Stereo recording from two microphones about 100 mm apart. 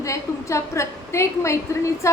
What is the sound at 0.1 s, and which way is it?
A woman's voice, 30° left (ahead or behind).